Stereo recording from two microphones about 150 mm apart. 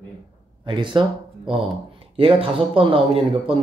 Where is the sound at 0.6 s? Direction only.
30° right (ahead or behind).